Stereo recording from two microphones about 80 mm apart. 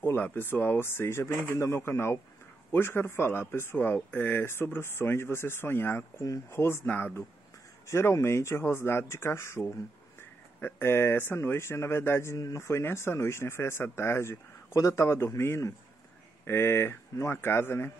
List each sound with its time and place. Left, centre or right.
0.0 s speech: left
12.4 s speech: left
12.6 s speech: left